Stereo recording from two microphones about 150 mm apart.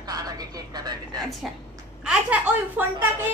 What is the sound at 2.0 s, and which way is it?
Speech, 10° right (ahead or behind).